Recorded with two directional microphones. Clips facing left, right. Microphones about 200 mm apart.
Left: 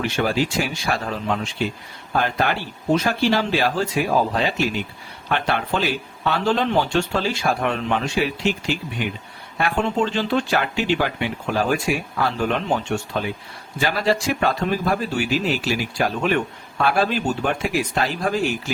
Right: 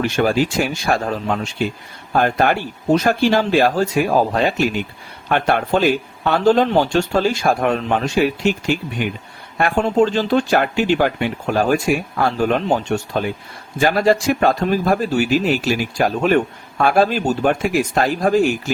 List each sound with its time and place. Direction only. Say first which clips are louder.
0.0 s speech: right 4 dB; 45° right (ahead or behind)